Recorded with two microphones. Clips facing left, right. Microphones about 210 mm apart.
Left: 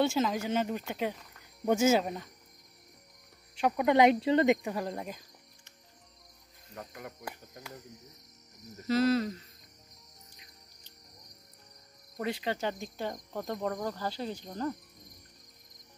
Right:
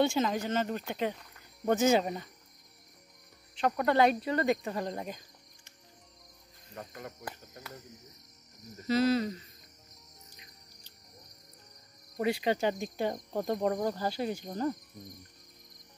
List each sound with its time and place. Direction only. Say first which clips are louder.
0.0 s speech: even; centre (ahead or behind)
3.5 s speech: left 2 dB; 10° left (ahead or behind)
4.6 s speech: even; 5° left (ahead or behind)
6.9 s speech: even; 10° left (ahead or behind)
8.8 s speech: even; centre (ahead or behind)
12.2 s cricket: right 4 dB; 10° right (ahead or behind)
13.1 s speech: right 4 dB; 20° right (ahead or behind)
13.8 s cricket: right 3 dB; 15° right (ahead or behind)